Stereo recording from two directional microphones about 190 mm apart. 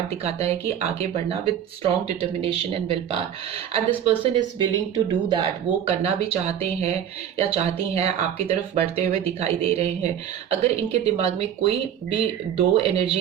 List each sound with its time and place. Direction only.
0.3 s speech: 35° right (ahead or behind)